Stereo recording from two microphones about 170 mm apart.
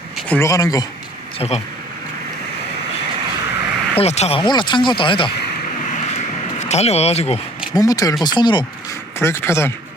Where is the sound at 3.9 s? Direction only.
40° left (ahead or behind).